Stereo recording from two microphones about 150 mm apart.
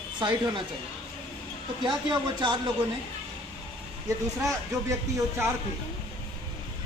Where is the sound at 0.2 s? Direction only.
30° right (ahead or behind).